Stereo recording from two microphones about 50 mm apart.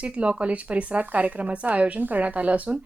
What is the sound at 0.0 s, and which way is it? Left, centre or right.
Speech, right.